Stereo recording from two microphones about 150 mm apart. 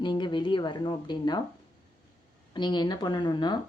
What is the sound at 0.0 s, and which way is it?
Speech, 30° left (ahead or behind).